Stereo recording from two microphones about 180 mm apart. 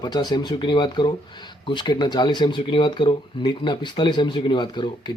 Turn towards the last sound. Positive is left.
turn(degrees=25)  # may be behind; listen again after turning